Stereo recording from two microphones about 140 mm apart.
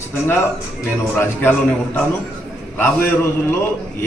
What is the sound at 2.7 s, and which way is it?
Speech, 15° left (ahead or behind).